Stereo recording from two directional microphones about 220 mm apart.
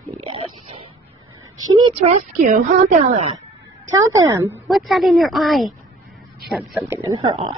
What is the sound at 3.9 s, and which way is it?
Speech, 15° right (ahead or behind).